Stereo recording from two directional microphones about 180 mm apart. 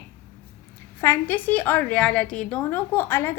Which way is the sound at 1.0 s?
15° left (ahead or behind).